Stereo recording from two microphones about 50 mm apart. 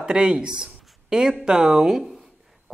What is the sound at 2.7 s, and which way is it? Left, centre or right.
Heart sounds, centre.